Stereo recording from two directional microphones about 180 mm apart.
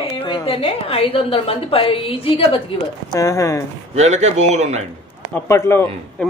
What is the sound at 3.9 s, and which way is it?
Speech, 40° right (ahead or behind).